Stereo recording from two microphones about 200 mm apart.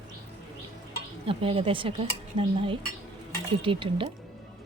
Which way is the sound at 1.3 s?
30° right (ahead or behind).